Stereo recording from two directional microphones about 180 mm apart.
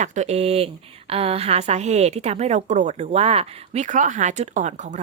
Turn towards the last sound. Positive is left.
turn(degrees=-45)  # may be behind; listen again after turning